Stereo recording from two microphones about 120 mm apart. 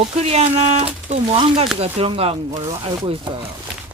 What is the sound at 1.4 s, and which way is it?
Speech, 45° right (ahead or behind).